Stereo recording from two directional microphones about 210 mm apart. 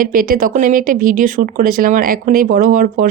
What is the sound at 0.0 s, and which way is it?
Speech, 40° right (ahead or behind).